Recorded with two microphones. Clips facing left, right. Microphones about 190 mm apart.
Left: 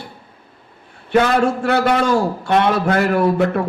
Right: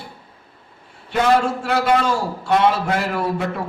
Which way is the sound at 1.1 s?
60° left (ahead or behind).